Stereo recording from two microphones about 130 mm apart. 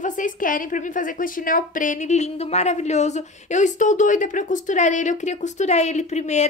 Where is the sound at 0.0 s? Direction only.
85° left.